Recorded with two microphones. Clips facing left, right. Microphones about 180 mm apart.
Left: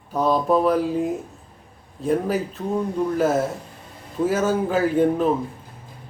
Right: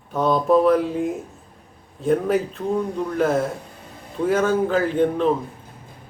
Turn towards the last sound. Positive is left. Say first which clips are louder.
# left 1 dB
turn(degrees=10)  # may be behind; listen again after turning